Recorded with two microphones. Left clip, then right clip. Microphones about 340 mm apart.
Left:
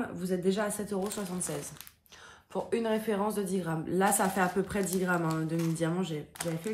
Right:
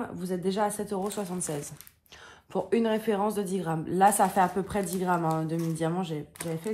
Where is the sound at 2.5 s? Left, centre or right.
Right.